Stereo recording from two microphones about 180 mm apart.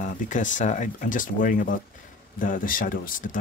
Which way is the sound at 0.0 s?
45° left (ahead or behind).